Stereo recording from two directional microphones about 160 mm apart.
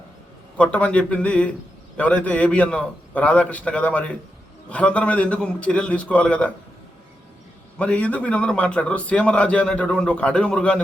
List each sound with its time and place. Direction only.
0.5 s a man's voice: 10° left (ahead or behind)
7.8 s a man's voice: 10° left (ahead or behind)